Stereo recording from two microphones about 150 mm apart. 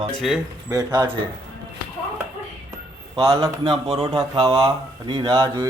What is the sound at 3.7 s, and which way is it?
Speech, 45° right (ahead or behind).